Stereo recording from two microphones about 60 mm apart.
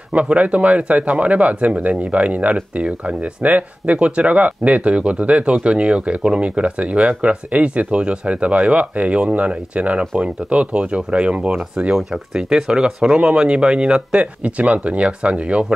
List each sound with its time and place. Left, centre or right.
0.1 s speech: right
12.1 s speech: centre